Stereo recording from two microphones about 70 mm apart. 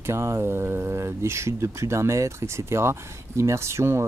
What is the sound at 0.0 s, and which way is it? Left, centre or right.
Speech, right.